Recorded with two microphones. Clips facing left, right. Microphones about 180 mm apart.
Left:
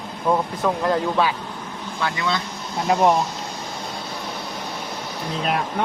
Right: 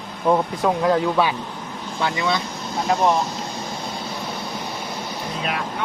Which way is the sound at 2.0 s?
20° right (ahead or behind).